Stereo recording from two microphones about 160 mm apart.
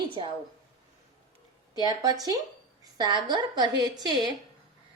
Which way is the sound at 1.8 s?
25° right (ahead or behind).